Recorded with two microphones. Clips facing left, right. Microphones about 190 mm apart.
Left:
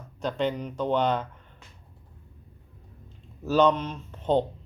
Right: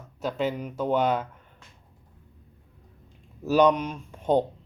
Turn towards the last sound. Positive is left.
turn(degrees=-10)  # may be behind; listen again after turning